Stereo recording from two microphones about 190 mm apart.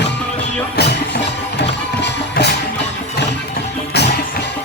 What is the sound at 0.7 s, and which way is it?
Music, 60° left (ahead or behind).